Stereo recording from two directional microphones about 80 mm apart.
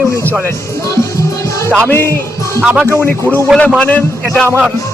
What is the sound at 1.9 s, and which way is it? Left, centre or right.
Music, left.